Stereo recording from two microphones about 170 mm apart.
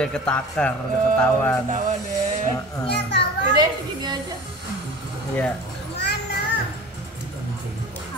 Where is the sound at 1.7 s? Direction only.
50° right (ahead or behind).